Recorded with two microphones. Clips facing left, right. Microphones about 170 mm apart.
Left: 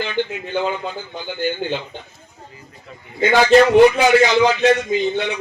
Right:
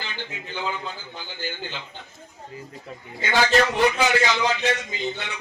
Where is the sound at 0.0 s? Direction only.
60° left (ahead or behind).